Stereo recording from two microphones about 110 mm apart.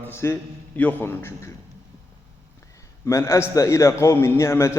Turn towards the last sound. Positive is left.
turn(degrees=25)  # may be behind; listen again after turning